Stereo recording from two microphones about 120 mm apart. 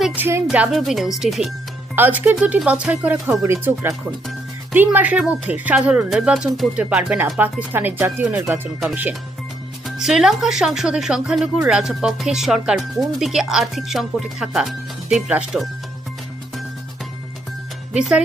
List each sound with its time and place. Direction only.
0.0 s speech: 15° right (ahead or behind)
0.7 s speech: centre (ahead or behind)
2.0 s speech: 15° right (ahead or behind)
9.8 s speech: 5° right (ahead or behind)
17.9 s speech: 10° right (ahead or behind)